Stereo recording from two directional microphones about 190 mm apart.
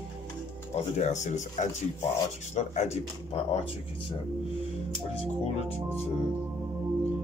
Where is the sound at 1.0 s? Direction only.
40° left (ahead or behind).